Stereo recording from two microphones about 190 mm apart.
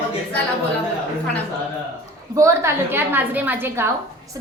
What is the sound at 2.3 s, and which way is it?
A woman's voice, 15° right (ahead or behind).